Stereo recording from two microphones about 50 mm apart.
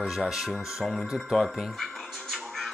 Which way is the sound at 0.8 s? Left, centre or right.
Centre.